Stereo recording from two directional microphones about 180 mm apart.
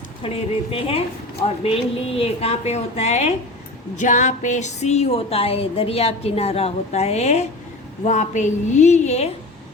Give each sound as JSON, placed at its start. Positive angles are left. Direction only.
{"t": 0.2, "sound": "speech", "side_deg": 30}